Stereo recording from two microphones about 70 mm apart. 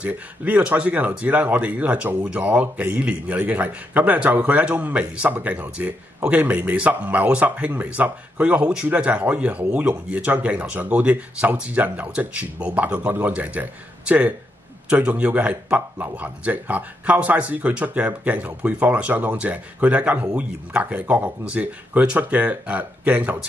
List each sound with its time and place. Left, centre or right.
0.0 s speech: centre